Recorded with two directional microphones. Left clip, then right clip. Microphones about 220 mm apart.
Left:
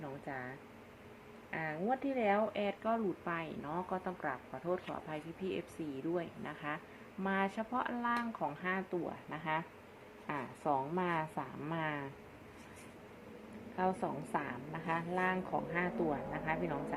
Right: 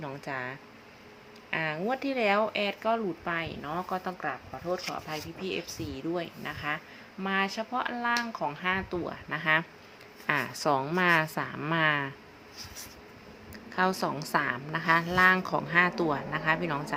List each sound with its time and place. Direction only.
0.3 s a woman's voice: 25° right (ahead or behind)
13.7 s a woman's voice: 35° right (ahead or behind)